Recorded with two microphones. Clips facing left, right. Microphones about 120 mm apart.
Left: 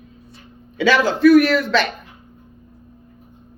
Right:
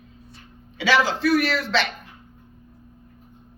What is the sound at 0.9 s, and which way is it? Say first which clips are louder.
Speech: left 7 dB; 50° left (ahead or behind).